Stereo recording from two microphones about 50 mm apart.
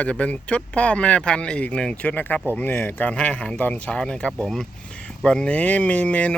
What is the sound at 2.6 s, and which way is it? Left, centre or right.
Speech, left.